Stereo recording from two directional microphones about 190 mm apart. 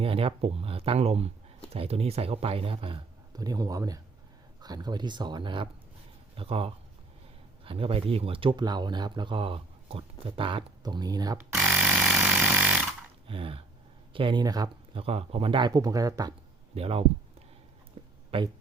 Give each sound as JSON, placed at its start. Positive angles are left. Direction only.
{"t": 0.0, "sound": "a man's voice", "side_deg": -30}
{"t": 13.2, "sound": "speech", "side_deg": -30}
{"t": 15.0, "sound": "a man's voice", "side_deg": -30}
{"t": 16.7, "sound": "speech", "side_deg": -30}
{"t": 18.0, "sound": "a sound", "side_deg": -30}
{"t": 18.3, "sound": "speech", "side_deg": -30}